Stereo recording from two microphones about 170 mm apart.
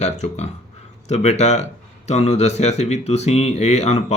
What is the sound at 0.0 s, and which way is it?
Speech, 40° left (ahead or behind).